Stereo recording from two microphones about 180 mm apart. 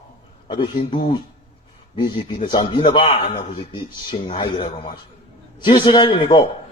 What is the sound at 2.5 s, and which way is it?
A man's voice, 25° left (ahead or behind).